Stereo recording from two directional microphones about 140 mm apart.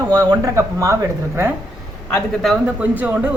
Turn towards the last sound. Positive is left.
turn(degrees=-10)  # may be behind; listen again after turning